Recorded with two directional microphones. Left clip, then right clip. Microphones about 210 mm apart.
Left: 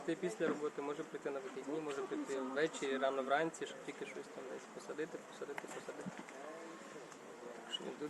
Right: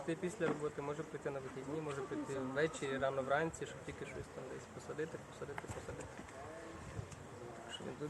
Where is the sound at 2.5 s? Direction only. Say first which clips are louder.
Even; 5° left (ahead or behind).